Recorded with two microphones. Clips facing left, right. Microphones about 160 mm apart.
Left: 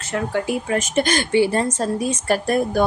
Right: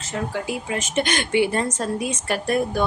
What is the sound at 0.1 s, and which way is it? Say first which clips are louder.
Speech: left 4 dB; 55° left (ahead or behind).